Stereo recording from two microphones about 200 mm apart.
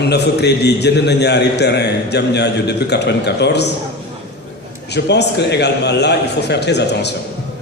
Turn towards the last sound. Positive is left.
turn(degrees=55)  # may be behind; listen again after turning